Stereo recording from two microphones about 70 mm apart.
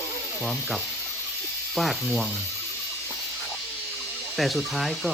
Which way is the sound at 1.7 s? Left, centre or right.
Centre.